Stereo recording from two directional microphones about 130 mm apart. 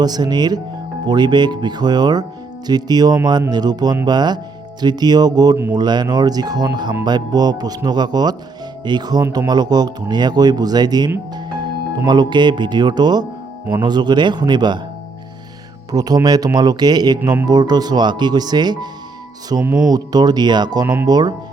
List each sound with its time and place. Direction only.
0.0 s speech: 30° right (ahead or behind)
9.2 s speech: 20° right (ahead or behind)
9.5 s speech: 30° right (ahead or behind)
15.9 s speech: 30° right (ahead or behind)
20.8 s speech: 15° right (ahead or behind)
21.1 s speech: 30° right (ahead or behind)